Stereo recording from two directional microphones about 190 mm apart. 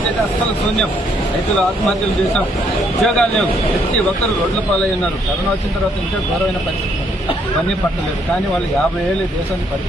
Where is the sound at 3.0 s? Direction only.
5° left (ahead or behind).